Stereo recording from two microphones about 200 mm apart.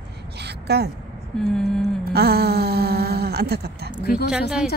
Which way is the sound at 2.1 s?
50° right (ahead or behind).